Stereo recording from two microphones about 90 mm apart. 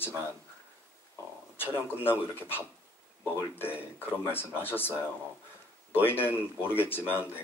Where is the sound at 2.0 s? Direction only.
25° left (ahead or behind).